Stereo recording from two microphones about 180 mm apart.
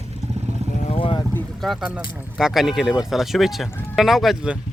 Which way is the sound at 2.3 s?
Centre (ahead or behind).